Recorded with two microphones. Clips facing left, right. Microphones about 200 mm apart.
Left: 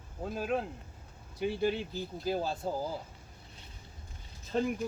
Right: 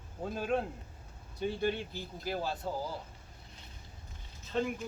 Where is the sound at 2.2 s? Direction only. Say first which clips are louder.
Left 3 dB; 20° left (ahead or behind).